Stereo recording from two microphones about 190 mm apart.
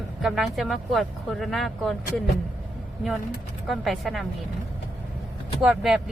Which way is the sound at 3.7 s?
Centre (ahead or behind).